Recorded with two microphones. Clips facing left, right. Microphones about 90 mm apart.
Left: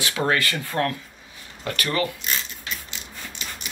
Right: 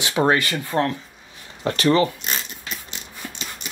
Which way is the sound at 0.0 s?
20° right (ahead or behind).